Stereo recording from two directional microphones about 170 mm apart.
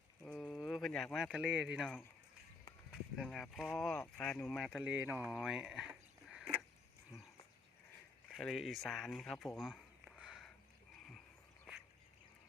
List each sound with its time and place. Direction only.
0.3 s speech: centre (ahead or behind)
3.2 s speech: centre (ahead or behind)
7.1 s speech: 15° left (ahead or behind)
8.4 s speech: centre (ahead or behind)